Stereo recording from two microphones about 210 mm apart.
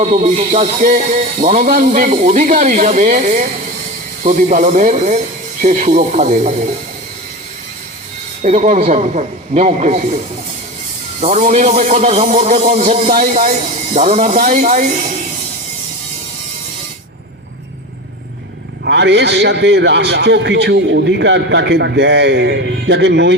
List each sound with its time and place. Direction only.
0.0 s a man's voice: 35° right (ahead or behind)
8.4 s a man's voice: 35° right (ahead or behind)
11.2 s a man's voice: 30° right (ahead or behind)
18.9 s a man's voice: 55° right (ahead or behind)